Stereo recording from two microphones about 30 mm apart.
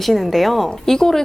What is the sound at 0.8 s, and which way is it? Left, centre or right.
Speech, centre.